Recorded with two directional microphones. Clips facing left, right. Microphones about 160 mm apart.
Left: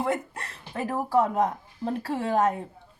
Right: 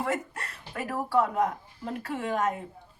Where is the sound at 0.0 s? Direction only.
25° left (ahead or behind).